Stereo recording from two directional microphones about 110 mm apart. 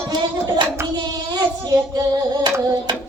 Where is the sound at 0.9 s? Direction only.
40° right (ahead or behind).